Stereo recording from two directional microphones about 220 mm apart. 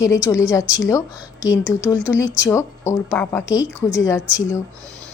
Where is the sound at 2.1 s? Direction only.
15° left (ahead or behind).